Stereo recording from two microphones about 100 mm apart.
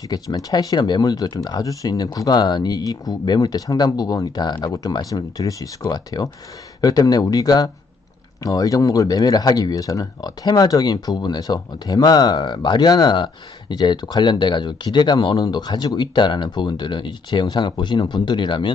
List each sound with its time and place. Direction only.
0.1 s speech: 40° left (ahead or behind)